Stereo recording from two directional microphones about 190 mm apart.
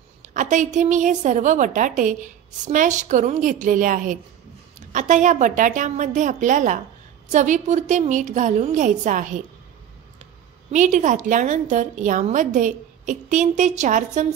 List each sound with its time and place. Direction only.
0.3 s a woman's voice: 40° right (ahead or behind)
10.7 s a woman's voice: 40° right (ahead or behind)